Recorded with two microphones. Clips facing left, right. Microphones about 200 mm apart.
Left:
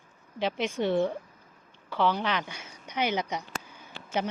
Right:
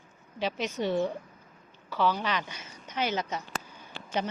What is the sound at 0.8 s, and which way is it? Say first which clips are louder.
Speech: left 2 dB; 10° right (ahead or behind).